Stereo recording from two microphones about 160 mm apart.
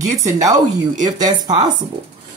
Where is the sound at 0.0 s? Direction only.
20° right (ahead or behind).